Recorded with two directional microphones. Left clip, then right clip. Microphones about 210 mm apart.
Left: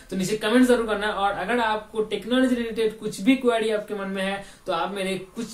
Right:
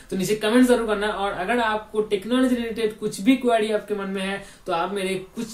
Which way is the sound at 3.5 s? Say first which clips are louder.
Right 2 dB; 5° left (ahead or behind).